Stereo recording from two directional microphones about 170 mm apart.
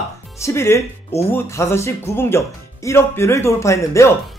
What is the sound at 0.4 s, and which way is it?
Speech, 15° left (ahead or behind).